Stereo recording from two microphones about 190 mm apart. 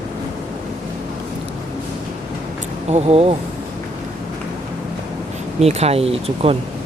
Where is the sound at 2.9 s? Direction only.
30° right (ahead or behind).